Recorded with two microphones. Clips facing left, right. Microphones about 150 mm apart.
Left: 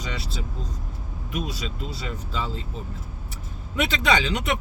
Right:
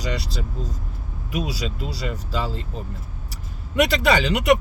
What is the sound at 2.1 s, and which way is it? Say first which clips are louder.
Speech: right 2 dB; 80° right.